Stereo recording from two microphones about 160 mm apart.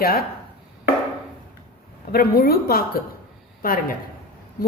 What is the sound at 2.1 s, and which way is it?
Speech, 75° left (ahead or behind).